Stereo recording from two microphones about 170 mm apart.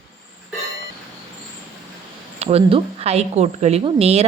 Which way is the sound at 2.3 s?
35° right (ahead or behind).